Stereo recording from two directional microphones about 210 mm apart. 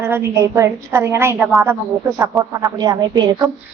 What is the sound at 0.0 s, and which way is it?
A woman's voice, 10° right (ahead or behind).